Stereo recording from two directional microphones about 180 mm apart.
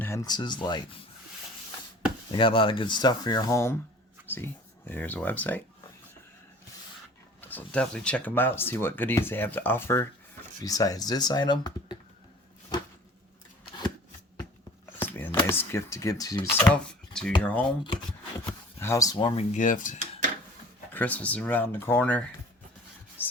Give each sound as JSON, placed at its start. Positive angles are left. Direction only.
{"t": 0.0, "sound": "speech", "side_deg": 15}
{"t": 2.3, "sound": "speech", "side_deg": 30}
{"t": 4.9, "sound": "speech", "side_deg": 10}
{"t": 7.4, "sound": "speech", "side_deg": 10}
{"t": 15.0, "sound": "a sound", "side_deg": 10}
{"t": 15.4, "sound": "speech", "side_deg": 15}
{"t": 19.5, "sound": "speech", "side_deg": 45}
{"t": 20.9, "sound": "speech", "side_deg": 10}
{"t": 23.2, "sound": "music", "side_deg": 10}